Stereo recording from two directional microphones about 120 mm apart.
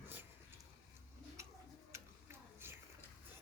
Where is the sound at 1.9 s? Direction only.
20° right (ahead or behind).